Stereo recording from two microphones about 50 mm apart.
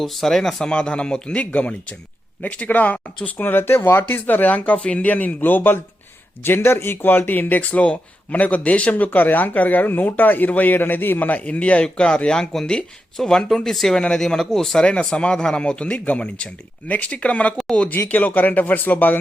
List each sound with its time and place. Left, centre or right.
0.0 s speech: centre
0.7 s speech: centre
3.3 s speech: left
6.4 s speech: left; by 14.8 s centre
14.8 s speech: left